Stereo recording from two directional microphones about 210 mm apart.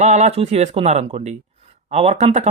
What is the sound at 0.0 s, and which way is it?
Speech, 35° right (ahead or behind).